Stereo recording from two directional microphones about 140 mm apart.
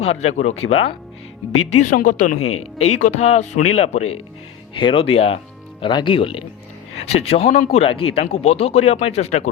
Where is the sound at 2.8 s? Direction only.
50° left (ahead or behind).